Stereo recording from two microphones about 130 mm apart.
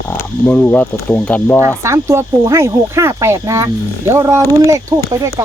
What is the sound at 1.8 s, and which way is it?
Speech, 20° right (ahead or behind).